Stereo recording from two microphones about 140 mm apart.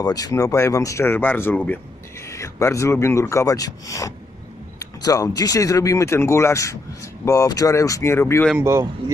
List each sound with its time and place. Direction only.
0.0 s speech: 25° left (ahead or behind)
8.5 s speech: 20° right (ahead or behind)